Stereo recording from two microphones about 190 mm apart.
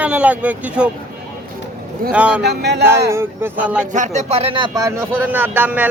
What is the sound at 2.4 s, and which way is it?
Speech, 60° right (ahead or behind).